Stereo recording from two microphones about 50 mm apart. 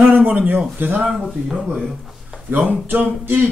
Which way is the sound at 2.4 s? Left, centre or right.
Right.